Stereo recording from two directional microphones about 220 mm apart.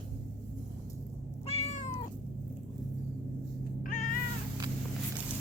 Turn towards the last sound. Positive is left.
turn(degrees=40)  # may be behind; listen again after turning